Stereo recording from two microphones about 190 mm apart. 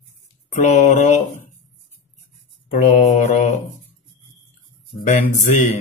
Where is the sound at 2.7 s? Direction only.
35° left (ahead or behind).